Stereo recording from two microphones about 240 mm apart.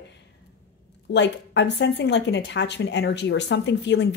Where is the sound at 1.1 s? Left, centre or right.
Left.